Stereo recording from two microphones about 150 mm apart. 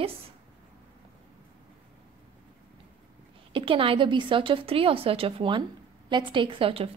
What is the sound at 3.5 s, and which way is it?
A woman's voice, 35° right (ahead or behind).